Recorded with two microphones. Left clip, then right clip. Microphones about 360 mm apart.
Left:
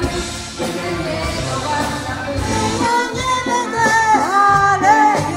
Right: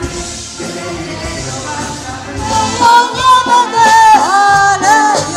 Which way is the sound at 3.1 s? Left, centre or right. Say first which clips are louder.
Right 10 dB; right.